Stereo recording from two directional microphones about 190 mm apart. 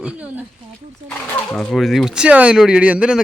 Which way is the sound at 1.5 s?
Centre (ahead or behind).